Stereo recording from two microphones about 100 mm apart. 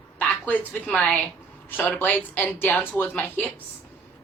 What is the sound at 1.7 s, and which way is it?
A woman's voice, 20° left (ahead or behind).